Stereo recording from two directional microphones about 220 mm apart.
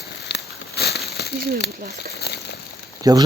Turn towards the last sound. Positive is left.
turn(degrees=-15)  # may be behind; listen again after turning